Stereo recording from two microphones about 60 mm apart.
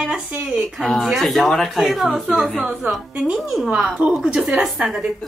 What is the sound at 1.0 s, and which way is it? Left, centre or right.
Speech, centre.